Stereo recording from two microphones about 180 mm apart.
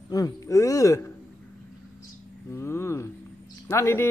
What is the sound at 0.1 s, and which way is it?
A man's voice, 20° left (ahead or behind).